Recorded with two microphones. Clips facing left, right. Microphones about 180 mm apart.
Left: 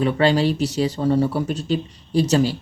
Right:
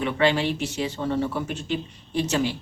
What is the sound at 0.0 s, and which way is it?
Speech, 35° left (ahead or behind).